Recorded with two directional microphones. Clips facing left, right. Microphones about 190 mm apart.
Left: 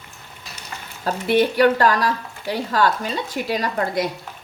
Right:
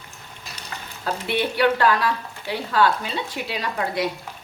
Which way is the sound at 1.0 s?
45° left (ahead or behind).